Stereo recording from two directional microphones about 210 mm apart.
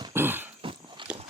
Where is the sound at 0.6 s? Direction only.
25° right (ahead or behind).